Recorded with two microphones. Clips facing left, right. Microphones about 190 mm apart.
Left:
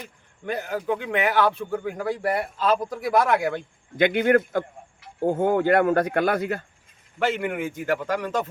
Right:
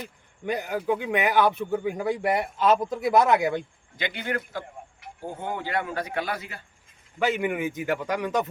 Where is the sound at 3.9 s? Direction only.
55° left (ahead or behind).